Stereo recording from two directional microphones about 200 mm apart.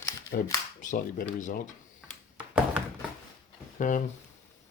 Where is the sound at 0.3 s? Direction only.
45° left (ahead or behind).